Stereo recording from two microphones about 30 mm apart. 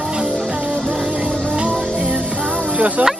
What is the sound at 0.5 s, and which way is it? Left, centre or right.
Music, right.